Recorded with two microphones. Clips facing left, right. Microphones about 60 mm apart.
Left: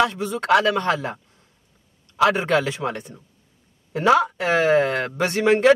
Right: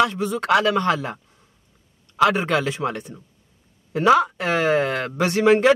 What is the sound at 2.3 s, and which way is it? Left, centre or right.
Speech, centre.